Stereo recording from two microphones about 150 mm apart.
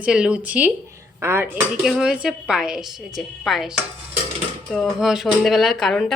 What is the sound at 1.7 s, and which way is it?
A woman's voice, 5° right (ahead or behind).